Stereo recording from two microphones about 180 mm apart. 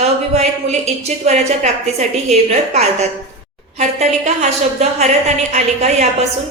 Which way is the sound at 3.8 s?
35° right (ahead or behind).